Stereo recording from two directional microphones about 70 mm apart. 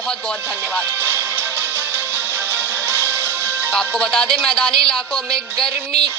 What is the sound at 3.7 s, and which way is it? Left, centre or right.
Speech, centre.